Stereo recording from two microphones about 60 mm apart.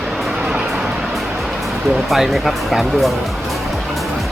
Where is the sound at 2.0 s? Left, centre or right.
Centre.